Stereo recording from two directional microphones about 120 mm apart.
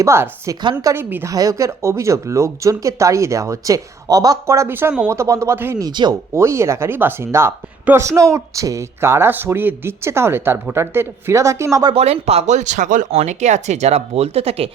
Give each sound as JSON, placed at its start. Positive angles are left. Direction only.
{"t": 0.0, "sound": "speech", "side_deg": -25}
{"t": 0.6, "sound": "speech", "side_deg": -40}
{"t": 0.9, "sound": "speech", "side_deg": -20}
{"t": 5.8, "sound": "speech", "side_deg": -35}
{"t": 6.3, "sound": "speech", "side_deg": -25}
{"t": 11.9, "sound": "speech", "side_deg": -60}